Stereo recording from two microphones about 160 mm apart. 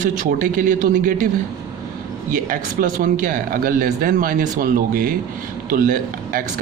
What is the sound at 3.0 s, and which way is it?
A man's voice, 60° right (ahead or behind).